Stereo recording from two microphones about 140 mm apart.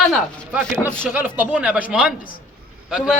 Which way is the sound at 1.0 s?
15° right (ahead or behind).